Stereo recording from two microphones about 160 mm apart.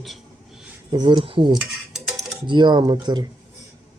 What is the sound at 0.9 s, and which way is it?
Speech, 25° right (ahead or behind).